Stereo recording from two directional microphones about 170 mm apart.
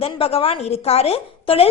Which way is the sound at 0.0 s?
35° left (ahead or behind).